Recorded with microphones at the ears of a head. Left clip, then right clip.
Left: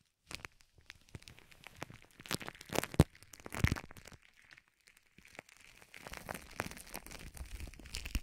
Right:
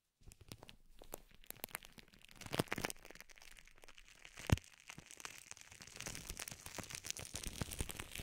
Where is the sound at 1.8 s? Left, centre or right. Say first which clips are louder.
Left 10 dB; left.